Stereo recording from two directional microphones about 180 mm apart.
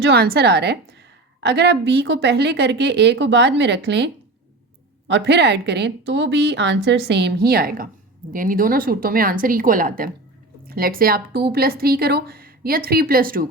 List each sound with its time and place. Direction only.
0.0 s a woman's voice: 60° right (ahead or behind)